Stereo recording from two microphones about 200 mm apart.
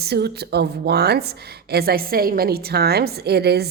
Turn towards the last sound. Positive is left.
turn(degrees=-55)  # may be behind; listen again after turning